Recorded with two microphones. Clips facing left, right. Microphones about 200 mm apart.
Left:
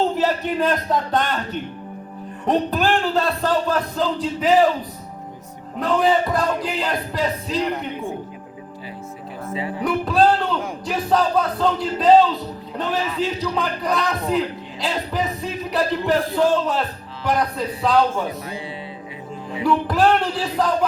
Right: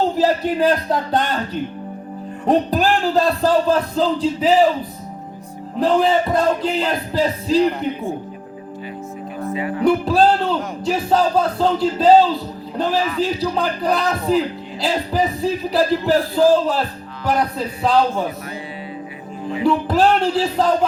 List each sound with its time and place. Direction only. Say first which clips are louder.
0.2 s speech: right 4 dB; 35° right (ahead or behind)
2.5 s speech: right 3 dB; 35° right (ahead or behind)
5.8 s speech: right 2 dB; 25° right (ahead or behind)
9.5 s speech: right 3 dB; 25° left (ahead or behind)
9.8 s speech: right 3 dB; 30° right (ahead or behind)
19.6 s speech: right 2 dB; 25° right (ahead or behind)